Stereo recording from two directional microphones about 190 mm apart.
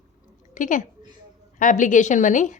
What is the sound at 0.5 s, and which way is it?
A woman's voice, 40° left (ahead or behind).